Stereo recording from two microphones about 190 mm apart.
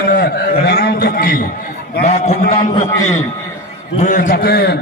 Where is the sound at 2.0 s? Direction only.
35° left (ahead or behind).